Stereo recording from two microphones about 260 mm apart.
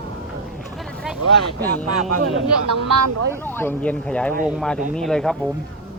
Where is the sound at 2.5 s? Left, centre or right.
Right.